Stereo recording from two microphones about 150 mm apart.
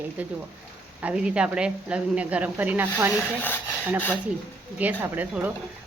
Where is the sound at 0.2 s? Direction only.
10° right (ahead or behind).